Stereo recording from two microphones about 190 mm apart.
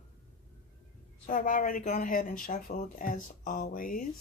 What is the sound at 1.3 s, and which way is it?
Speech, 45° left (ahead or behind).